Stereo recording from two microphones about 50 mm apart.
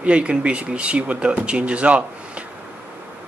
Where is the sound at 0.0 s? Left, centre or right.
Right.